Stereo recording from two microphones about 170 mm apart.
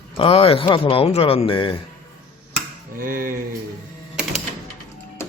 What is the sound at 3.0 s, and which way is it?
Speech, 55° right (ahead or behind).